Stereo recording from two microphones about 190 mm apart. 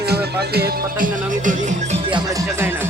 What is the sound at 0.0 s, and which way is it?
Music, 55° right (ahead or behind).